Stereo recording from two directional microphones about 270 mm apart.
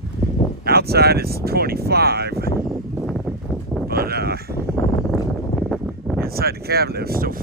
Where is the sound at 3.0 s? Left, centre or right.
Centre.